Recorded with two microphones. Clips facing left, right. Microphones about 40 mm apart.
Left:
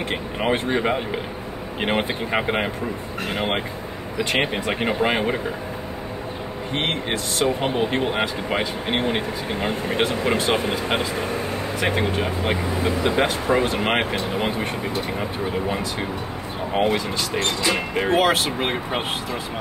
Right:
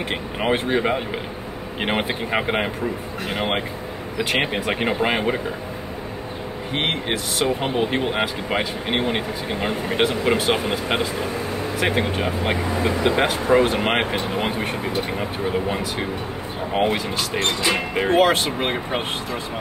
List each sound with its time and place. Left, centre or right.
0.1 s speech: centre
6.7 s speech: centre
16.8 s speech: centre
17.7 s speech: centre